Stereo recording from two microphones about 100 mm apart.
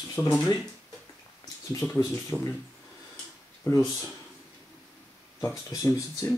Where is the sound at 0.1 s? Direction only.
35° left (ahead or behind).